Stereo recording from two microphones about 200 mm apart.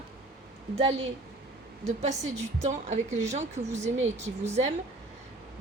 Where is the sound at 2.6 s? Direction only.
35° right (ahead or behind).